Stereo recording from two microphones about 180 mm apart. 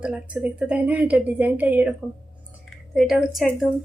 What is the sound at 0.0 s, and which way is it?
A woman's voice, 5° right (ahead or behind).